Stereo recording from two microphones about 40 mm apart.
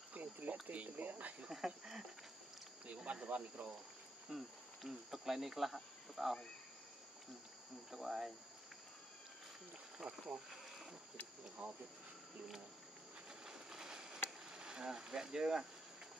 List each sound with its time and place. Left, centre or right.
0.1 s cricket: right
0.7 s speech: right
1.5 s speech: centre
2.9 s speech: right
4.3 s speech: centre
7.9 s cricket: centre
10.0 s speech: centre
10.5 s insect: centre
11.6 s speech: right
13.5 s a sound: centre
14.5 s speech: centre